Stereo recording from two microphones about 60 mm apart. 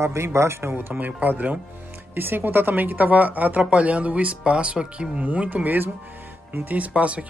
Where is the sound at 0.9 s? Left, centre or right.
Right.